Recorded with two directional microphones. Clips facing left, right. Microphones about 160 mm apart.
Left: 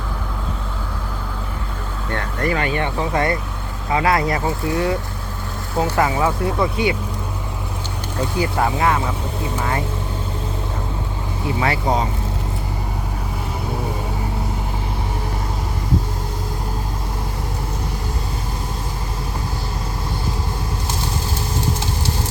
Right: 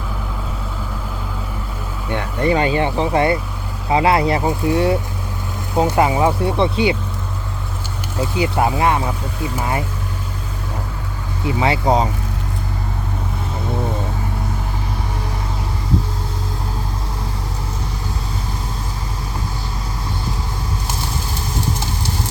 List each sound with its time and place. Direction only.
2.0 s speech: 15° right (ahead or behind)
2.6 s speech: 30° right (ahead or behind)
8.4 s speech: 20° right (ahead or behind)
11.6 s speech: 20° right (ahead or behind)